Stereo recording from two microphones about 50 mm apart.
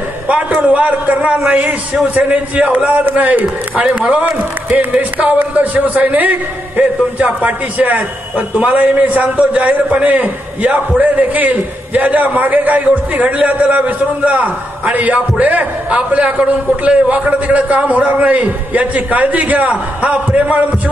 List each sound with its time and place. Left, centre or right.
0.6 s a man's voice: right